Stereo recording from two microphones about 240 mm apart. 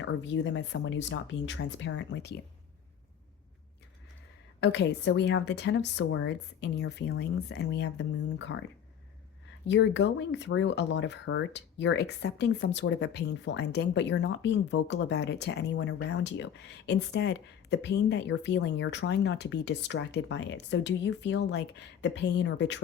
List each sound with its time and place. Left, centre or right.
0.0 s speech: left
4.6 s speech: left
9.6 s speech: left